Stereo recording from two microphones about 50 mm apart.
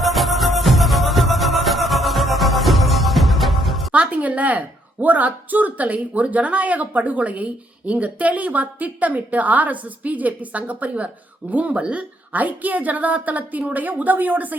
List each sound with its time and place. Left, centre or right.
0.0 s music: centre
3.9 s a woman's voice: right